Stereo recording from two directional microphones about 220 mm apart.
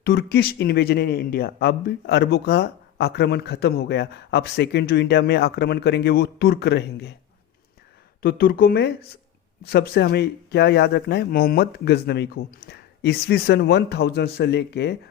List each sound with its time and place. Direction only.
0.0 s speech: 45° left (ahead or behind)
8.2 s speech: 40° left (ahead or behind)